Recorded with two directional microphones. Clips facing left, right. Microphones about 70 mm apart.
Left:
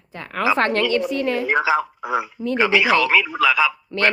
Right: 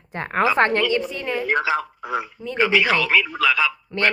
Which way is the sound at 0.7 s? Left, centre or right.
Centre.